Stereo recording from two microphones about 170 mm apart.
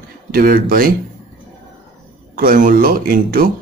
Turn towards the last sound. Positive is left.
turn(degrees=-55)  # may be behind; listen again after turning